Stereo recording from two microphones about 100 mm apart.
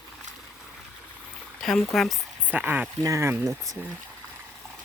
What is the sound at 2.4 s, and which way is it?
Speech, 20° right (ahead or behind).